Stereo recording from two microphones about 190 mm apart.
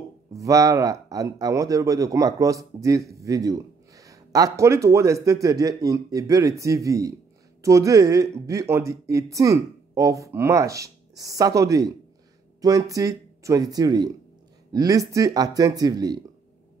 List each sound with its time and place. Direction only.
0.3 s speech: 15° right (ahead or behind)